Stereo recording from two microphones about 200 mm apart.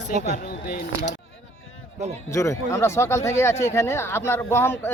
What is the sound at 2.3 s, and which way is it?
Speech, 15° left (ahead or behind).